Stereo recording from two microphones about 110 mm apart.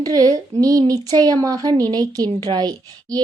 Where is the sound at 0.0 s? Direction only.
35° right (ahead or behind).